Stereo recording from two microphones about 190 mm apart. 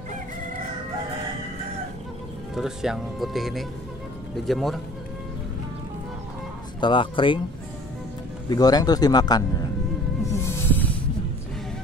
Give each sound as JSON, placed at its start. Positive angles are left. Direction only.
{"t": 2.5, "sound": "speech", "side_deg": -5}
{"t": 6.8, "sound": "speech", "side_deg": 25}
{"t": 8.5, "sound": "speech", "side_deg": 20}
{"t": 10.3, "sound": "snake", "side_deg": 15}